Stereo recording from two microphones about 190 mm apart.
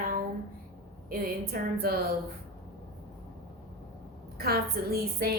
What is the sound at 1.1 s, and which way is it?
Speech, 50° right (ahead or behind).